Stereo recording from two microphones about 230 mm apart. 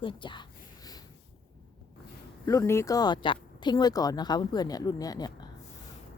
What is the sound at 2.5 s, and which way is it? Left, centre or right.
Speech, centre.